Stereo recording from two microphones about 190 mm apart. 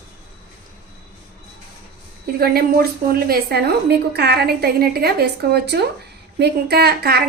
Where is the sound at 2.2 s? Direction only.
55° right (ahead or behind).